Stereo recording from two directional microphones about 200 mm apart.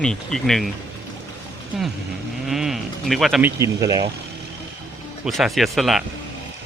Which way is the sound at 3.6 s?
15° right (ahead or behind).